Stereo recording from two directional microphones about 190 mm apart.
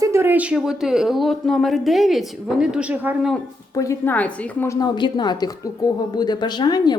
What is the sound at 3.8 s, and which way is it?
A woman's voice, 15° left (ahead or behind).